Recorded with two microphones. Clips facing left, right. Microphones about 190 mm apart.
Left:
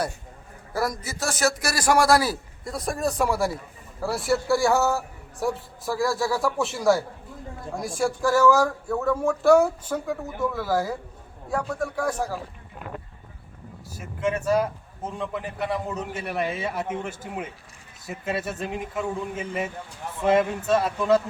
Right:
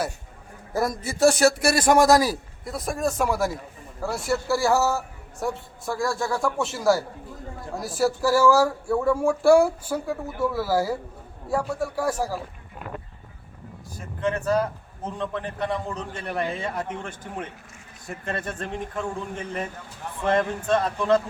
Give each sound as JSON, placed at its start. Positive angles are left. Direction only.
{"t": 0.7, "sound": "speech", "side_deg": -25}
{"t": 2.6, "sound": "a man's voice", "side_deg": 0}
{"t": 13.9, "sound": "a man's voice", "side_deg": 10}